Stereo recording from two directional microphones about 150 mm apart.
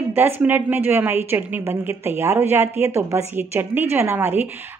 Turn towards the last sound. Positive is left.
turn(degrees=-15)  # may be behind; listen again after turning